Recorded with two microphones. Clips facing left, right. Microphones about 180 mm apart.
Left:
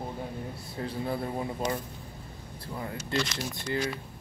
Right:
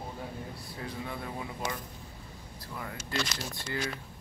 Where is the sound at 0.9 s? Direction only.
30° left (ahead or behind).